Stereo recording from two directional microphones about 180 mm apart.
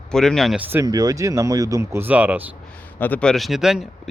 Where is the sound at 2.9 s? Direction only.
10° left (ahead or behind).